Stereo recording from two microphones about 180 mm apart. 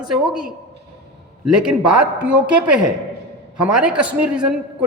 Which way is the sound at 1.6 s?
5° right (ahead or behind).